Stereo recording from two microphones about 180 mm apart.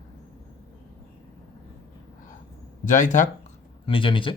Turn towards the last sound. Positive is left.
turn(degrees=30)  # may be behind; listen again after turning